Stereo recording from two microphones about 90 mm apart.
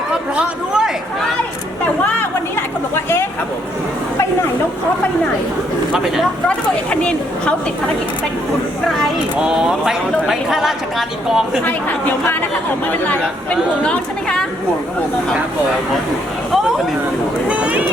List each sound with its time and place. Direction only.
0.1 s a sound: 10° right (ahead or behind)
2.0 s a sound: 20° left (ahead or behind)
6.5 s speech: 15° left (ahead or behind)
9.4 s speech: 10° right (ahead or behind)
11.6 s speech: 20° left (ahead or behind)
17.5 s speech: 15° right (ahead or behind)